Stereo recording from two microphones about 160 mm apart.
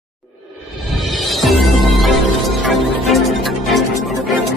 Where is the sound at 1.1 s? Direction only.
Centre (ahead or behind).